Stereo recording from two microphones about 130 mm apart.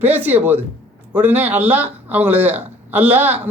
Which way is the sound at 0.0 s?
15° right (ahead or behind).